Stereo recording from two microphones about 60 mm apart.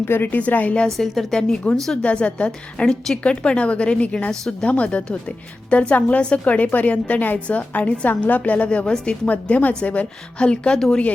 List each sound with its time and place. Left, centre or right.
0.0 s a woman's voice: left
0.3 s a woman's voice: left
0.9 s a woman's voice: centre
1.4 s speech: centre
2.0 s a woman's voice: centre